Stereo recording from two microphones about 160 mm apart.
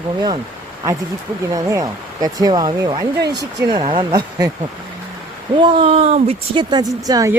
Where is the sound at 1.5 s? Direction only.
20° right (ahead or behind).